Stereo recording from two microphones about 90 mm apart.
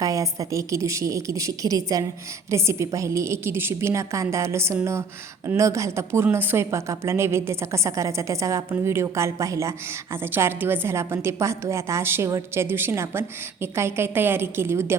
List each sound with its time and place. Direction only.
0.0 s a woman's voice: 40° right (ahead or behind)